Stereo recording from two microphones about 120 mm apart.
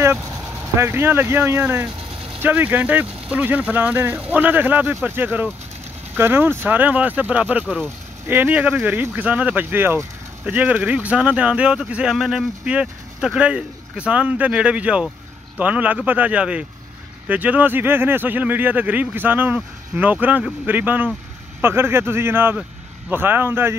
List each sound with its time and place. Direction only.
0.7 s speech: 20° right (ahead or behind)